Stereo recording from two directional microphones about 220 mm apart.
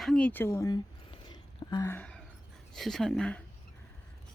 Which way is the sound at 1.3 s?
20° left (ahead or behind).